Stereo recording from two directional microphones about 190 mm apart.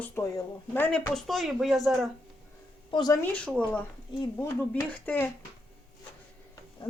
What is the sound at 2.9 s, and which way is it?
Speech, 20° left (ahead or behind).